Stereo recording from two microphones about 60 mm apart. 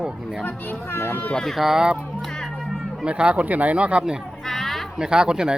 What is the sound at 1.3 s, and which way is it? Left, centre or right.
Speech, centre.